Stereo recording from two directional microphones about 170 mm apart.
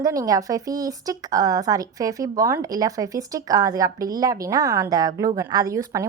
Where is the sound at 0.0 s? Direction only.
20° right (ahead or behind).